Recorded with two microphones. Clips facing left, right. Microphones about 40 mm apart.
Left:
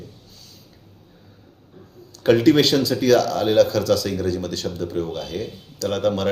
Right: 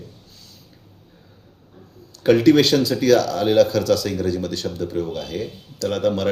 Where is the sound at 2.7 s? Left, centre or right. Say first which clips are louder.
Right 1 dB; centre.